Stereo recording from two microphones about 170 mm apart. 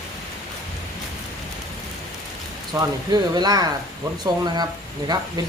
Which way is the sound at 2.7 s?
15° right (ahead or behind).